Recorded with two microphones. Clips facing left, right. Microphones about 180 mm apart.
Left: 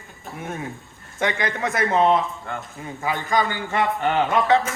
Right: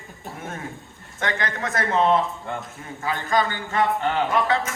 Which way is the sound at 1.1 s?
15° left (ahead or behind).